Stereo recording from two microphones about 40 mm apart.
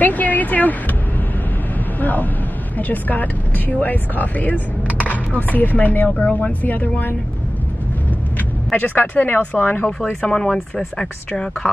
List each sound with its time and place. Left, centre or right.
0.0 s a sound: left
2.0 s vehicle: left
2.8 s speech: left
8.7 s speech: left
10.2 s speech: centre